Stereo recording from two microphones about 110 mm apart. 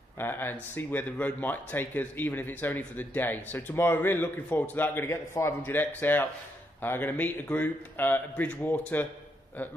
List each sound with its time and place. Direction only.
0.2 s speech: 20° left (ahead or behind)